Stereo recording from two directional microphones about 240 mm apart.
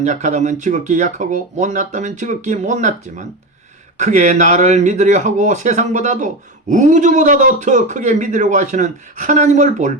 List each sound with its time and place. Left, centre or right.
0.0 s a man's voice: right